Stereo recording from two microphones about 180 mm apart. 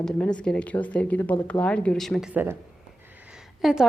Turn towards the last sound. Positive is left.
turn(degrees=0)  # may be behind; listen again after turning